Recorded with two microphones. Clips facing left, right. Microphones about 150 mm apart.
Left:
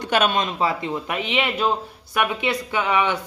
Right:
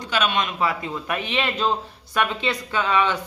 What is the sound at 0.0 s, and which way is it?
Speech, 50° left (ahead or behind).